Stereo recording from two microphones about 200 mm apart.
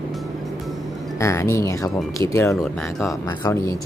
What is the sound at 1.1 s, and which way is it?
Speech, 15° left (ahead or behind).